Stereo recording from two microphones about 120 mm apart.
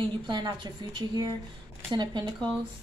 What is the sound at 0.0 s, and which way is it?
A woman's voice, 40° right (ahead or behind).